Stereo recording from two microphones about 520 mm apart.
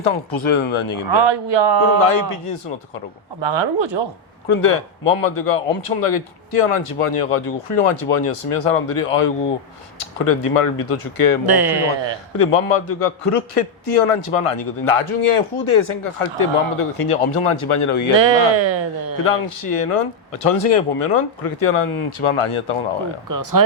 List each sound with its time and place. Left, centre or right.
0.0 s a man's voice: left
1.1 s speech: right
2.0 s a man's voice: left
2.3 s a man's voice: left
3.4 s speech: right
4.4 s a man's voice: left
11.4 s speech: right
12.4 s a man's voice: left
18.2 s speech: right
19.2 s a man's voice: left
23.3 s speech: right